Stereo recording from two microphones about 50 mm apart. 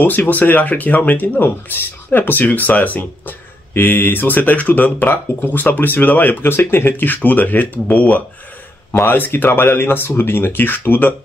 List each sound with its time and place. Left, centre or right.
0.0 s speech: left